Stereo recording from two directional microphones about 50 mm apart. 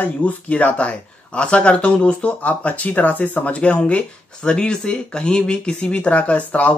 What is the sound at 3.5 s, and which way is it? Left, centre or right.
Speech, left.